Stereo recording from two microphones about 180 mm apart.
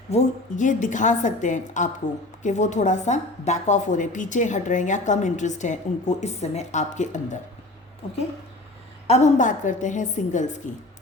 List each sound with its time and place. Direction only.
0.1 s a woman's voice: 40° left (ahead or behind)
9.0 s a woman's voice: 40° left (ahead or behind)